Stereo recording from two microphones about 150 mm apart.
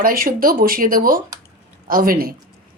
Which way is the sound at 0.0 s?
75° right (ahead or behind).